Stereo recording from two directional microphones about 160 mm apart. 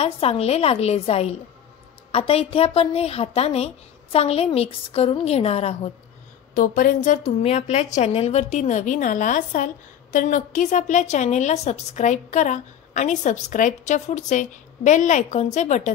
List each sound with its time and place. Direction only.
0.0 s a woman's voice: 40° left (ahead or behind)
6.5 s a woman's voice: 55° left (ahead or behind)